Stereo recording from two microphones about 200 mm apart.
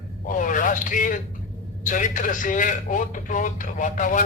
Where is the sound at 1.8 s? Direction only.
40° left (ahead or behind).